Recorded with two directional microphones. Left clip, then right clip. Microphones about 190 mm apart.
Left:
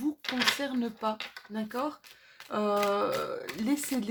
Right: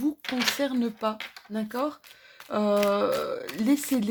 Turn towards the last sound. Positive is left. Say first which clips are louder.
# right 6 dB
turn(degrees=-40)  # may be behind; listen again after turning